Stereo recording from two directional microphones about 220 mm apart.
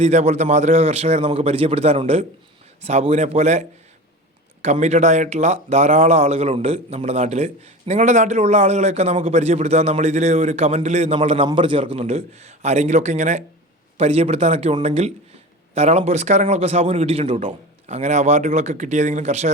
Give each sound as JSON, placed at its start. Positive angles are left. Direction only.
{"t": 0.0, "sound": "a man's voice", "side_deg": -30}
{"t": 4.6, "sound": "a man's voice", "side_deg": -30}